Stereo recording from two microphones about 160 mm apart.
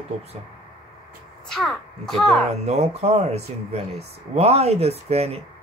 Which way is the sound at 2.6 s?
45° right (ahead or behind).